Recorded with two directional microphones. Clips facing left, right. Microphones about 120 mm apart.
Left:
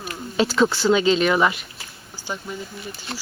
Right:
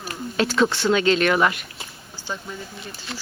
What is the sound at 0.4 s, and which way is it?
Speech, 5° left (ahead or behind).